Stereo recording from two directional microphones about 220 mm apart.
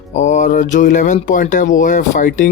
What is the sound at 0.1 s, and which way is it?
Mantra, 35° left (ahead or behind).